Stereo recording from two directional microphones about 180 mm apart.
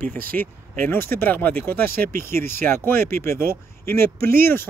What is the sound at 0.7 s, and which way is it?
Speech, 10° left (ahead or behind).